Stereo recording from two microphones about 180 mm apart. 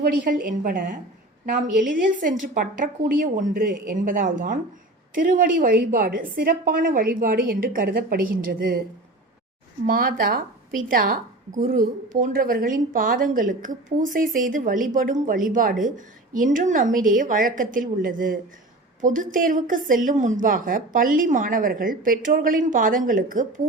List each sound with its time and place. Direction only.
0.0 s a woman's voice: 50° right (ahead or behind)
9.8 s a woman's voice: 55° right (ahead or behind)